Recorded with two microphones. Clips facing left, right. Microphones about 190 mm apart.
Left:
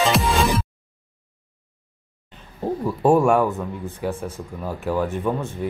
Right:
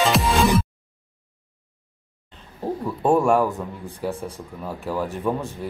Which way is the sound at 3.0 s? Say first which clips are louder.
Left 2 dB; 5° left (ahead or behind).